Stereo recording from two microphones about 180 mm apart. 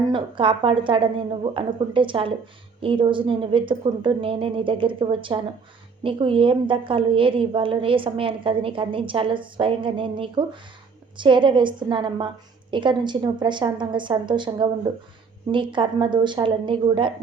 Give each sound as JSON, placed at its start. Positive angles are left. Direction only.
{"t": 0.1, "sound": "a woman's voice", "side_deg": -30}